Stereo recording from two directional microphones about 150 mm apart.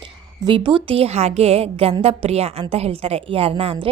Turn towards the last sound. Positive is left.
turn(degrees=-40)  # may be behind; listen again after turning